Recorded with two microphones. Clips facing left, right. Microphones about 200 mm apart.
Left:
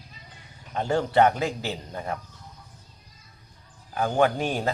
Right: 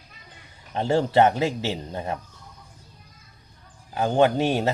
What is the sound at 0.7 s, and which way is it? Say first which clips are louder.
Speech: right 2 dB; 25° right (ahead or behind).